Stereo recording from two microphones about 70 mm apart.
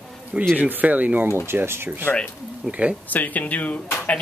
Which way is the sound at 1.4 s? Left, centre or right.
Right.